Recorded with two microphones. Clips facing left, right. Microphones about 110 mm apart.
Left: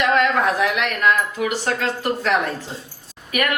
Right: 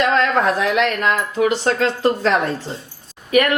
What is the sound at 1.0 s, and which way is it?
A woman's voice, 30° right (ahead or behind).